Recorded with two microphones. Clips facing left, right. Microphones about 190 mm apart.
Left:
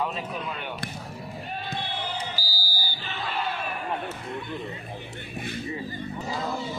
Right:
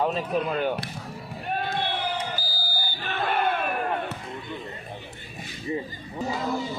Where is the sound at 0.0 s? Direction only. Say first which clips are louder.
Right 6 dB; 40° right (ahead or behind).